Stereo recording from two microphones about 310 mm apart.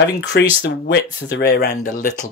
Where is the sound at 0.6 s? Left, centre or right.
Left.